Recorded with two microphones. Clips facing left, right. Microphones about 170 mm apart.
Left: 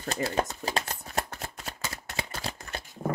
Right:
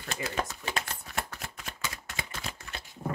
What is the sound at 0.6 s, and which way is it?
Shuffling cards, 35° left (ahead or behind).